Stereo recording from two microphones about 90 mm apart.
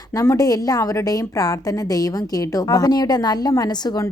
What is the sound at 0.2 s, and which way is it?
Speech, 40° left (ahead or behind).